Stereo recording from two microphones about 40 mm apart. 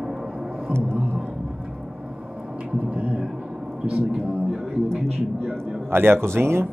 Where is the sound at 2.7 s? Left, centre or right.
Right.